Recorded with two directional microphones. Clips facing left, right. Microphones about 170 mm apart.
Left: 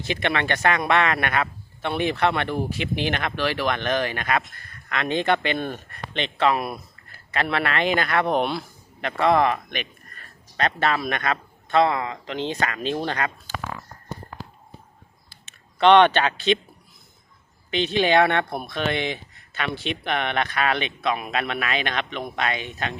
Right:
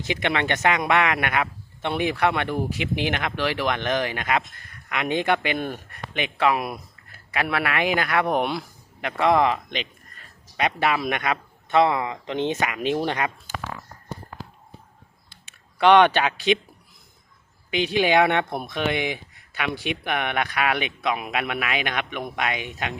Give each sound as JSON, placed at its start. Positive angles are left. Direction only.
{"t": 0.0, "sound": "speech", "side_deg": -15}
{"t": 15.4, "sound": "speech", "side_deg": -10}
{"t": 17.7, "sound": "speech", "side_deg": -10}